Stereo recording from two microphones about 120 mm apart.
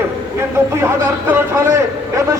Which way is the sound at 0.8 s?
20° right (ahead or behind).